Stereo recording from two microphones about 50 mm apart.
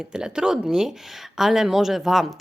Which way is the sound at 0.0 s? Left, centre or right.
Centre.